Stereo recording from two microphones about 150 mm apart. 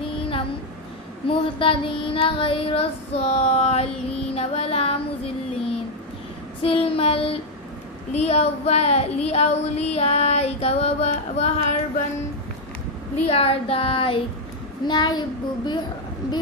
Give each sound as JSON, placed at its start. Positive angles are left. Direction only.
{"t": 1.2, "sound": "child singing", "side_deg": 35}
{"t": 13.2, "sound": "child singing", "side_deg": 40}
{"t": 14.9, "sound": "a child's voice", "side_deg": 30}